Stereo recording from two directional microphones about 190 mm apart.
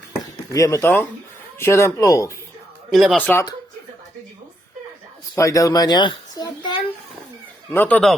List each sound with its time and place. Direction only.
0.5 s speech: 15° left (ahead or behind)
2.9 s speech: centre (ahead or behind)
5.3 s a child's voice: 15° left (ahead or behind)
7.7 s speech: 10° left (ahead or behind)